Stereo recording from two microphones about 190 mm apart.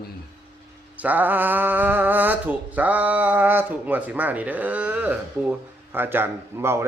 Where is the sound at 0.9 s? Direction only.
10° right (ahead or behind).